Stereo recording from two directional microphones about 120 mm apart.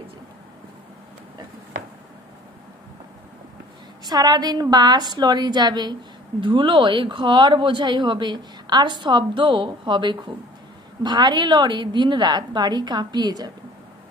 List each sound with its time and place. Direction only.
4.0 s speech: 35° right (ahead or behind)